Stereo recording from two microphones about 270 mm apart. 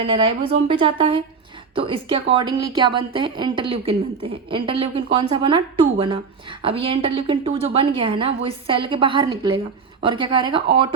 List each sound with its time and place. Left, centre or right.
0.0 s a woman's voice: centre